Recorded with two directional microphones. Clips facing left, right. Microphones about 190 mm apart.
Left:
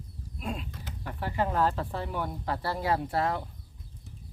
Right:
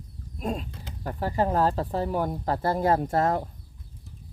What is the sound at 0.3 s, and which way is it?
Speech, 40° right (ahead or behind).